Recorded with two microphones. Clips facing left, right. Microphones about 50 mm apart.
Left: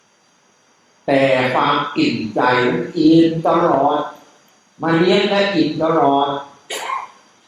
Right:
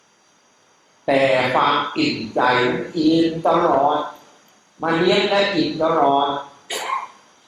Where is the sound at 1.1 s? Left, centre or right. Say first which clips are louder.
Left 2 dB; centre.